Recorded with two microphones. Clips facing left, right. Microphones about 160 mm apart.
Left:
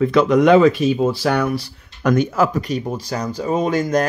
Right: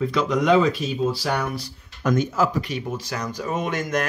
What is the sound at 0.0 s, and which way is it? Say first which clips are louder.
Speech: left 8 dB; 60° left (ahead or behind).